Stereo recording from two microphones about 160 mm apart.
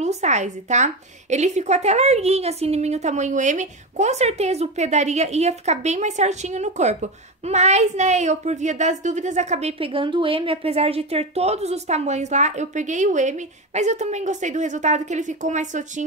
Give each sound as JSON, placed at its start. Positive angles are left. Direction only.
{"t": 0.0, "sound": "a woman's voice", "side_deg": -45}